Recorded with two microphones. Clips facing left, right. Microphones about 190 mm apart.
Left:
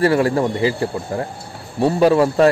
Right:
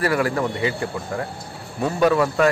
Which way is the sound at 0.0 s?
30° left (ahead or behind).